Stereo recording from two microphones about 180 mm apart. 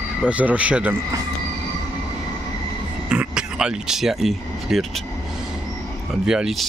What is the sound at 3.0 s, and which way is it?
Speech, 5° right (ahead or behind).